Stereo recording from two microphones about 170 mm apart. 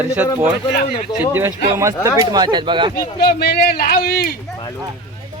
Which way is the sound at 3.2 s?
70° left (ahead or behind).